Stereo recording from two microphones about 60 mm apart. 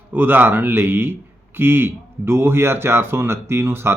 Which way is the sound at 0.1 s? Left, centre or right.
Right.